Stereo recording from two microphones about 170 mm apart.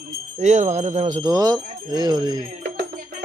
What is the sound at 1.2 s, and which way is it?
Speech, 25° right (ahead or behind).